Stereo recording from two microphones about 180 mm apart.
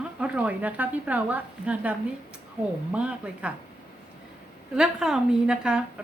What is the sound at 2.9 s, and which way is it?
Speech, 5° right (ahead or behind).